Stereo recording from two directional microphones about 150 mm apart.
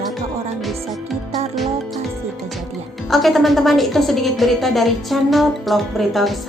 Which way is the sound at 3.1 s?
Centre (ahead or behind).